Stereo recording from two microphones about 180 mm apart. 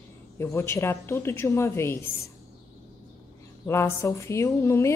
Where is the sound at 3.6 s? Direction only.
15° left (ahead or behind).